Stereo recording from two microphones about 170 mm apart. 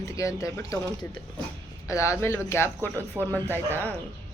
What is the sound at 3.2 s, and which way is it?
Speech, 15° right (ahead or behind).